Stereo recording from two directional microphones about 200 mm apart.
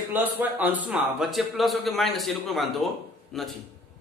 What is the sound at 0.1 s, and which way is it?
A man's voice, 10° right (ahead or behind).